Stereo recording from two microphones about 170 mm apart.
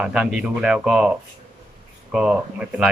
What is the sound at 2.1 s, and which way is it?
Speech, 5° right (ahead or behind).